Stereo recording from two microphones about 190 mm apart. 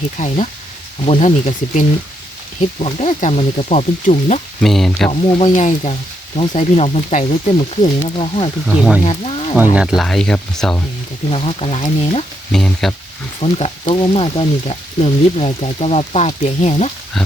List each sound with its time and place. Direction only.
0.2 s speech: 40° left (ahead or behind)
4.6 s speech: centre (ahead or behind)
5.4 s speech: 35° left (ahead or behind)
9.7 s speech: centre (ahead or behind)
11.3 s speech: 30° left (ahead or behind)
12.5 s speech: centre (ahead or behind)
13.4 s speech: 30° left (ahead or behind)
17.2 s speech: centre (ahead or behind)